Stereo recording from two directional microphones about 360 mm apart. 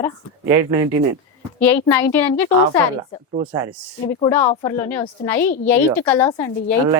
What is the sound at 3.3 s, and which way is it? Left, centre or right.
Speech, centre.